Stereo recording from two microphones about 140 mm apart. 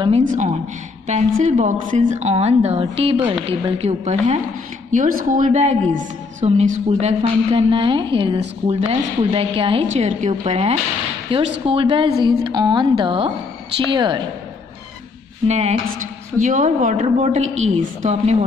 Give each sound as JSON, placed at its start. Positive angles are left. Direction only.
{"t": 0.3, "sound": "a woman's voice", "side_deg": -65}
{"t": 4.9, "sound": "a woman's voice", "side_deg": -70}
{"t": 15.4, "sound": "a woman's voice", "side_deg": -50}